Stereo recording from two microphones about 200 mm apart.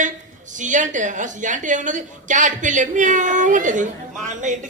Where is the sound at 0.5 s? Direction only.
40° right (ahead or behind).